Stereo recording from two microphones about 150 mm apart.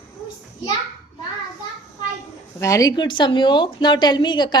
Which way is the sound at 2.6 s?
20° left (ahead or behind).